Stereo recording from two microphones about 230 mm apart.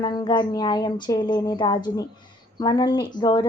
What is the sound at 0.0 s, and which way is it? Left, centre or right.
Speech, centre.